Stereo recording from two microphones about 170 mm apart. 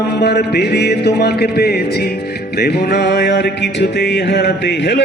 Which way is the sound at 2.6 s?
75° left (ahead or behind).